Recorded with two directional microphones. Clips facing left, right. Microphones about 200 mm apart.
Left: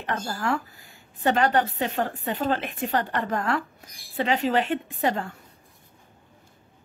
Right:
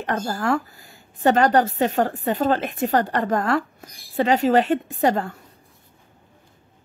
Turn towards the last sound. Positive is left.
turn(degrees=-40)  # may be behind; listen again after turning